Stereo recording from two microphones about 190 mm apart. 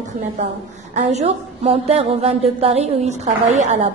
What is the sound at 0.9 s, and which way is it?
A woman's voice, 35° right (ahead or behind).